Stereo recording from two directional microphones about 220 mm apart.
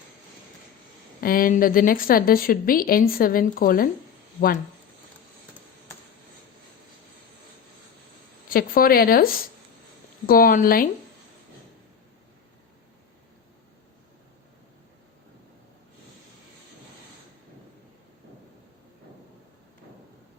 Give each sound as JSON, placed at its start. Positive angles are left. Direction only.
{"t": 1.2, "sound": "a woman's voice", "side_deg": 40}
{"t": 8.4, "sound": "a woman's voice", "side_deg": 40}